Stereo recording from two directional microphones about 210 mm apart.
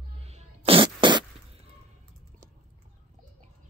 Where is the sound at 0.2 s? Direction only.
30° right (ahead or behind).